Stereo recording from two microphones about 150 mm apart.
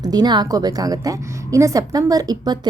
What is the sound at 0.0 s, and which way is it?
A woman's voice, 25° right (ahead or behind).